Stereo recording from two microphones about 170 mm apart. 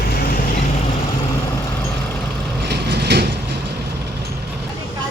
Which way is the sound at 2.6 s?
75° right (ahead or behind).